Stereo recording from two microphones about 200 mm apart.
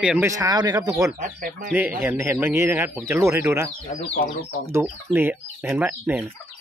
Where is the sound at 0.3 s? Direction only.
15° right (ahead or behind).